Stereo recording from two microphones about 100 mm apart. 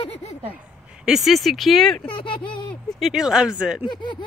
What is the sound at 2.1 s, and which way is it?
Speech, 55° left (ahead or behind).